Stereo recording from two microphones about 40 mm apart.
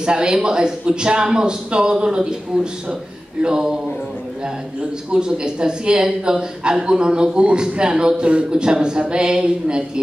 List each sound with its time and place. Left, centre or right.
0.0 s a woman's voice: right
3.4 s a woman's voice: centre
5.1 s a woman's voice: right